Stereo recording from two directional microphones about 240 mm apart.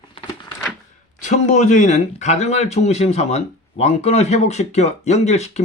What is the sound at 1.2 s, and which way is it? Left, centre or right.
Speech, left.